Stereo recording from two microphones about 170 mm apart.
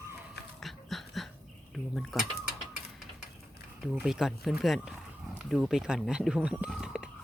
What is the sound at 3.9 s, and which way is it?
Speech, 5° right (ahead or behind).